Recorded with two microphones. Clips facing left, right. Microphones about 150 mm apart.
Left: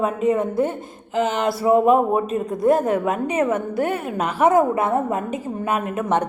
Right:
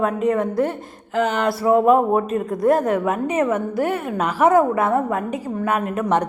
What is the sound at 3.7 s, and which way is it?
A woman's voice, 25° left (ahead or behind).